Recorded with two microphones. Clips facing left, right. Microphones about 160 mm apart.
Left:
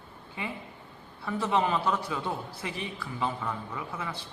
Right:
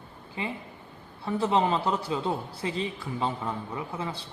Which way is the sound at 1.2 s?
25° right (ahead or behind).